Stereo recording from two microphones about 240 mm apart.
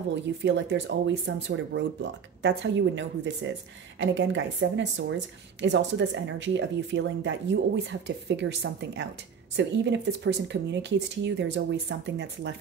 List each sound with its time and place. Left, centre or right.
0.1 s speech: right